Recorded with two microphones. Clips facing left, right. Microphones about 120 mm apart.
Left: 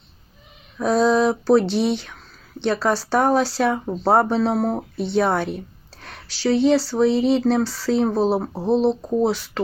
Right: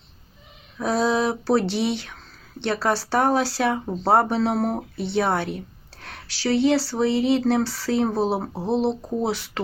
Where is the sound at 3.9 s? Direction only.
Centre (ahead or behind).